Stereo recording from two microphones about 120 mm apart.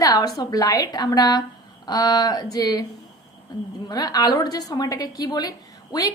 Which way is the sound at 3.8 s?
30° left (ahead or behind).